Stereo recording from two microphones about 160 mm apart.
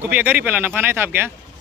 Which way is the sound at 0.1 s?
10° right (ahead or behind).